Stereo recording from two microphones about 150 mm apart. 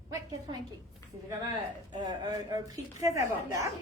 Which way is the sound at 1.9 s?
30° right (ahead or behind).